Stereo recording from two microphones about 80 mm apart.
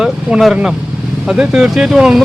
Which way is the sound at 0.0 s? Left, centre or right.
Centre.